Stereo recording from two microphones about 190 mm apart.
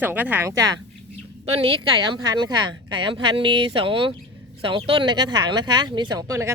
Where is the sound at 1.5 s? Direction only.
30° right (ahead or behind).